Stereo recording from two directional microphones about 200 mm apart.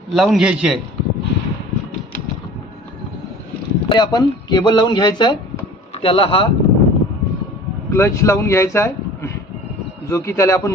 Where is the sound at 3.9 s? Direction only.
20° left (ahead or behind).